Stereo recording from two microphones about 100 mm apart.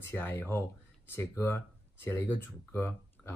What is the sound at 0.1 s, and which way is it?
Speech, 20° left (ahead or behind).